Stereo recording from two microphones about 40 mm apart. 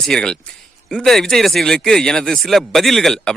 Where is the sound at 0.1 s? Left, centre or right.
Left.